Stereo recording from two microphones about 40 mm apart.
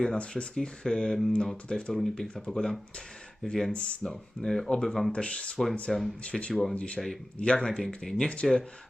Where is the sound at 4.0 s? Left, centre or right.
Centre.